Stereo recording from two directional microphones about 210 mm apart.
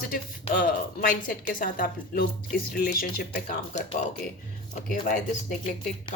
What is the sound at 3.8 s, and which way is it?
A woman's voice, 30° left (ahead or behind).